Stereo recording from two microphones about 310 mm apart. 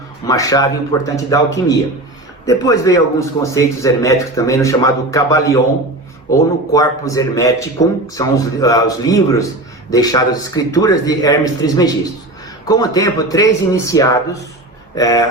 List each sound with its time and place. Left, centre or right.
0.3 s a man's voice: centre